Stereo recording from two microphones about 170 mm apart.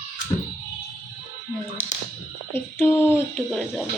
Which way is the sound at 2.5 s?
15° left (ahead or behind).